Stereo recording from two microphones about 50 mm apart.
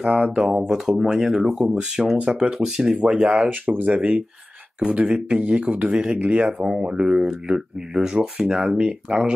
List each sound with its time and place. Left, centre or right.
0.0 s speech: centre
2.4 s speech: centre